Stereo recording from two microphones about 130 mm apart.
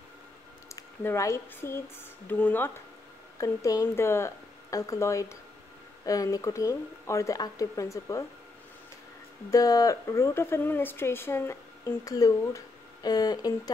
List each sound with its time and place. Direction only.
0.7 s speech: 25° left (ahead or behind)
9.5 s speech: 25° left (ahead or behind)